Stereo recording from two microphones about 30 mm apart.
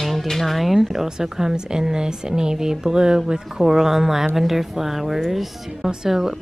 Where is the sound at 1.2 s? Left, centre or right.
Centre.